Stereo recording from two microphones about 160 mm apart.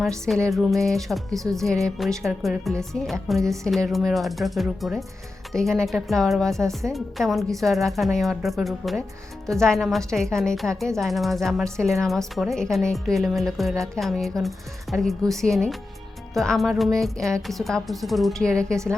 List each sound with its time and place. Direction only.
0.3 s speech: 5° left (ahead or behind)
1.3 s speech: 20° right (ahead or behind)
1.5 s speech: centre (ahead or behind)